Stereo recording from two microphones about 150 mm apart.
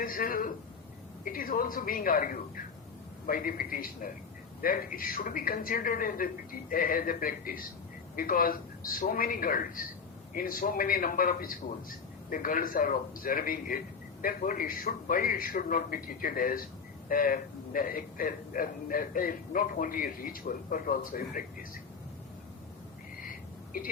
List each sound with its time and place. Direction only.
0.0 s a man's voice: 70° left (ahead or behind)